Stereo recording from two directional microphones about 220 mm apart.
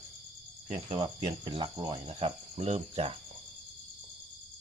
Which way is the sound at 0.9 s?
25° right (ahead or behind).